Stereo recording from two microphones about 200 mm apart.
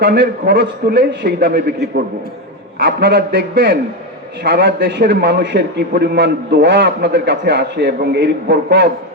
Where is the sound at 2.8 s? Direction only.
50° right (ahead or behind).